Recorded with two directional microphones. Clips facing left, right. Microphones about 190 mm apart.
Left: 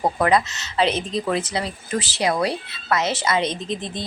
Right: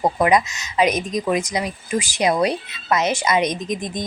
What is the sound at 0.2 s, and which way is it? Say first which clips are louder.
Speech: right 2 dB; 15° right (ahead or behind).